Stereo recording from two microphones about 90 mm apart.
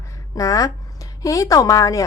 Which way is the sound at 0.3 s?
40° left (ahead or behind).